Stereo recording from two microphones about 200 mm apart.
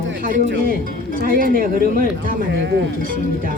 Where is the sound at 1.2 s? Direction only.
45° right (ahead or behind).